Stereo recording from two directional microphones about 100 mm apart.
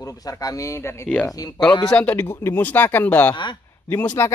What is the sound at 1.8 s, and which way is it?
A man's voice, 15° left (ahead or behind).